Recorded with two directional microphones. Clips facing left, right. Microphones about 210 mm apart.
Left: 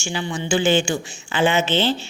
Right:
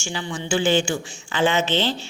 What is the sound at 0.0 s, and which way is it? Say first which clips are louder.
A woman's voice: left 3 dB; 15° left (ahead or behind).